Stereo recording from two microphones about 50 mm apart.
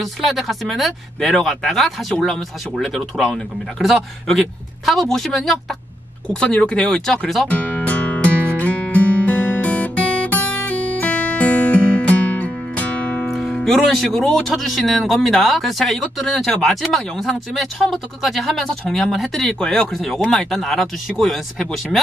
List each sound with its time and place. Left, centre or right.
0.0 s speech: centre
6.3 s speech: centre
7.4 s music: left
13.3 s music: centre
13.7 s speech: centre